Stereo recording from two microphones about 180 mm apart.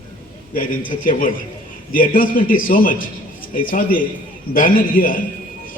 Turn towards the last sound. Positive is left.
turn(degrees=50)  # may be behind; listen again after turning